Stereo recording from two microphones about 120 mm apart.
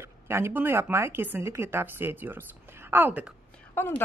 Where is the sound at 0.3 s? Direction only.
20° right (ahead or behind).